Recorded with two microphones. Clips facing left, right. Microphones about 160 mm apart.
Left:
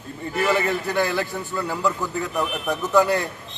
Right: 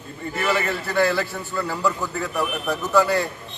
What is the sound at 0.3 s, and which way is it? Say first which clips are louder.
A man's voice: left 2 dB; 15° left (ahead or behind).